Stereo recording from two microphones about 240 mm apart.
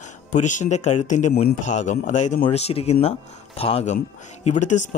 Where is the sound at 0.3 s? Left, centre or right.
Left.